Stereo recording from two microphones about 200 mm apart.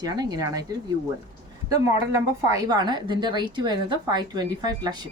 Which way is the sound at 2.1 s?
20° right (ahead or behind).